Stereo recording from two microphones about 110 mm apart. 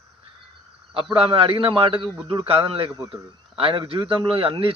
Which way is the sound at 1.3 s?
60° right (ahead or behind).